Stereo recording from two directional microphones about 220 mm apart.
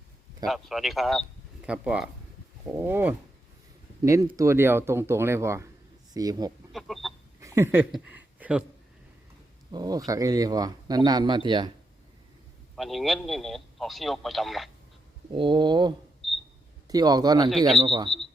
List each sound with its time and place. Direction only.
0.4 s a man's voice: centre (ahead or behind); by 6.5 s 15° right (ahead or behind)
6.7 s chicken: centre (ahead or behind)
7.3 s a sound: 15° right (ahead or behind)
9.7 s speech: 15° right (ahead or behind)
12.7 s a man's voice: centre (ahead or behind)
15.3 s speech: 20° right (ahead or behind)